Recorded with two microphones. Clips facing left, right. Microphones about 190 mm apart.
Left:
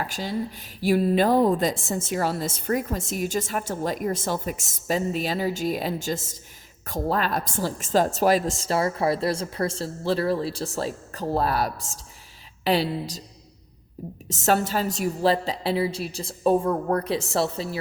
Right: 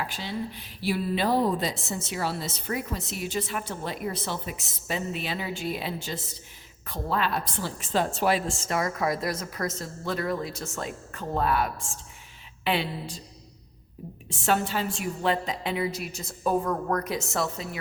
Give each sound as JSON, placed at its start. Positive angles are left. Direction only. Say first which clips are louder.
{"t": 0.0, "sound": "a woman's voice", "louder": "left 4 dB", "side_deg": 40}
{"t": 14.3, "sound": "a woman's voice", "louder": "left 3 dB", "side_deg": 40}